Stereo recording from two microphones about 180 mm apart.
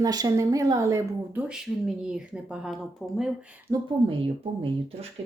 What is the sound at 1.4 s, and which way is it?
Speech, 5° right (ahead or behind).